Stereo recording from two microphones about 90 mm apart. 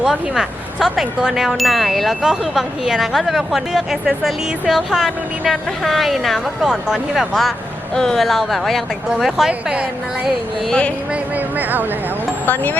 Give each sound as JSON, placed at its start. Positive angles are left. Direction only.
{"t": 0.0, "sound": "chime", "side_deg": -5}
{"t": 9.5, "sound": "a woman's voice", "side_deg": -15}
{"t": 10.7, "sound": "speech", "side_deg": 10}
{"t": 11.1, "sound": "speech", "side_deg": -20}